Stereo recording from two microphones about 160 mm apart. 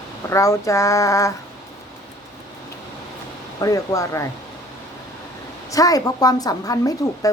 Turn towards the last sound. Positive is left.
turn(degrees=20)  # may be behind; listen again after turning